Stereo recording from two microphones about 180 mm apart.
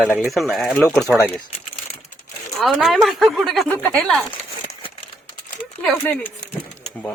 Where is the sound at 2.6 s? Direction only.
Centre (ahead or behind).